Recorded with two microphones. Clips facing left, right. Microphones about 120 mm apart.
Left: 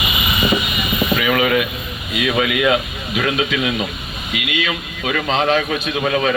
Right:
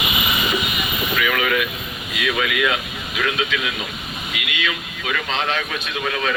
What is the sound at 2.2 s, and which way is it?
Speech, 30° left (ahead or behind).